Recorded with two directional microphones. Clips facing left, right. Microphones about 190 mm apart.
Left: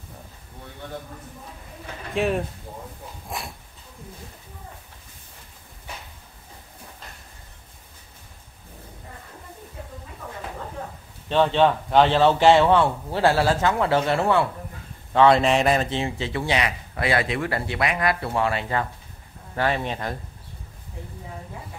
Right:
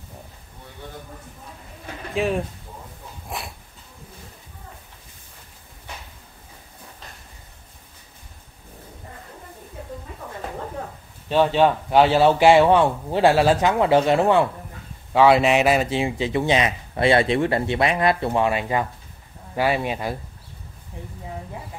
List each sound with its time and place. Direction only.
2.1 s speech: centre (ahead or behind)
3.3 s a sound: centre (ahead or behind)
11.2 s a man's voice: 10° right (ahead or behind)
15.1 s a man's voice: 5° right (ahead or behind)